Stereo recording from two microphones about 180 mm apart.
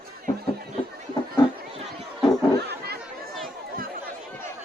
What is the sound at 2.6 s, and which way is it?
Chatter, 65° right (ahead or behind).